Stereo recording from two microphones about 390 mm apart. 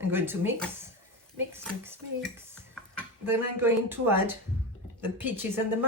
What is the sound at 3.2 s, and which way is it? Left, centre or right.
A woman's voice, centre.